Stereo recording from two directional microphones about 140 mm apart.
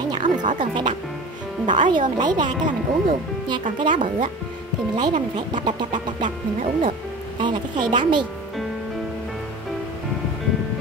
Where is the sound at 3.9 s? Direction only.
70° right (ahead or behind).